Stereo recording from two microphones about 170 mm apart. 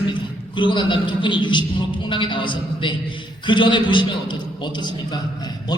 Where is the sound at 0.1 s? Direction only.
30° left (ahead or behind).